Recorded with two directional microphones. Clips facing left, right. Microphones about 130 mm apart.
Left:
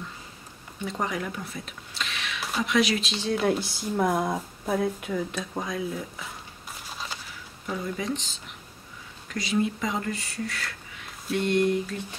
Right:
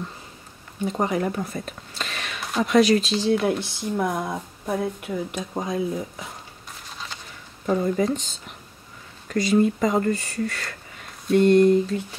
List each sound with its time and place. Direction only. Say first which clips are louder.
0.8 s speech: right 5 dB; 25° right (ahead or behind)
1.1 s speech: right 8 dB; 40° right (ahead or behind)
3.3 s speech: right 2 dB; centre (ahead or behind)
5.1 s speech: right 2 dB; 20° right (ahead or behind)
6.9 s a sound: left 1 dB; 5° left (ahead or behind)
7.6 s speech: right 9 dB; 45° right (ahead or behind)
9.3 s speech: right 7 dB; 50° right (ahead or behind)
11.3 s a sound: right 8 dB; 40° right (ahead or behind)